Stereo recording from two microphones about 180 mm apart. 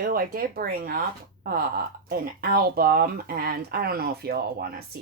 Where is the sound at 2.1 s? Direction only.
55° right (ahead or behind).